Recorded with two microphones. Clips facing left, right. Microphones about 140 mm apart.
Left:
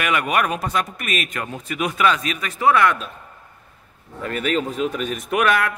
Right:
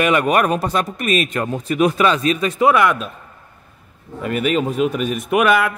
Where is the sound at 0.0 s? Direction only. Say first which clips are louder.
Right 5 dB; 35° right (ahead or behind); by 3.1 s 10° right (ahead or behind).